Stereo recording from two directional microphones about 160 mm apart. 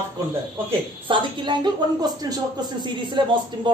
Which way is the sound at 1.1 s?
30° right (ahead or behind).